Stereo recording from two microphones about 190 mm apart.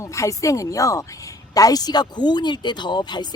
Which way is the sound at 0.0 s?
15° left (ahead or behind).